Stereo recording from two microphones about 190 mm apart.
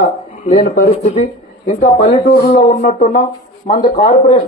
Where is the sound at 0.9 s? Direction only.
35° left (ahead or behind).